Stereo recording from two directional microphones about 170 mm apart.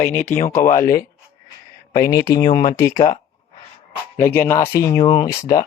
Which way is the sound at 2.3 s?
25° left (ahead or behind).